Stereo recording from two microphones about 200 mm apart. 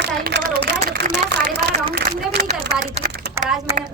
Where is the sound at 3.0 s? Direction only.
50° right (ahead or behind).